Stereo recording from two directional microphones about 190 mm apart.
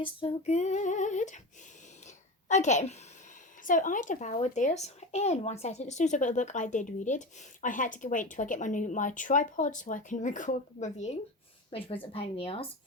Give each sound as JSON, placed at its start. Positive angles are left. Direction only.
{"t": 0.0, "sound": "speech", "side_deg": 30}
{"t": 2.0, "sound": "a sound", "side_deg": 40}
{"t": 3.6, "sound": "a woman's voice", "side_deg": 45}